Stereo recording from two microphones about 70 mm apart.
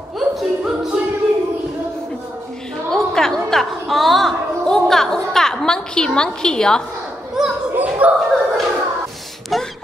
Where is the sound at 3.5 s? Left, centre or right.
Centre.